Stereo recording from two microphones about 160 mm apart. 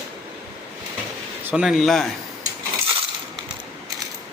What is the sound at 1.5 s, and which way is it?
Speech, centre (ahead or behind).